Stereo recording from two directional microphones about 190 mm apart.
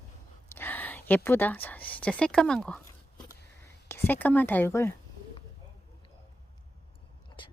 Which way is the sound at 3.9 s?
10° left (ahead or behind).